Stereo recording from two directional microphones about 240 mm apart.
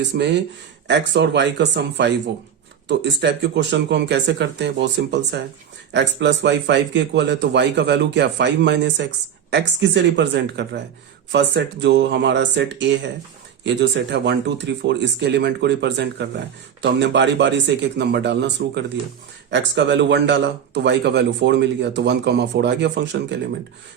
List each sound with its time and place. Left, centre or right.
0.0 s speech: right